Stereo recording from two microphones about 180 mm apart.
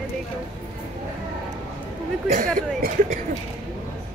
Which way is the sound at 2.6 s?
50° right (ahead or behind).